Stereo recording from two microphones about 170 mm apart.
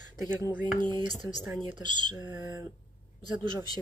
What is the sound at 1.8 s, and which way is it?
Speech, 25° right (ahead or behind).